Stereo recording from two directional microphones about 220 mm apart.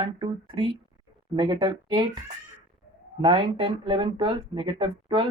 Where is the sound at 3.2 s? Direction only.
20° right (ahead or behind).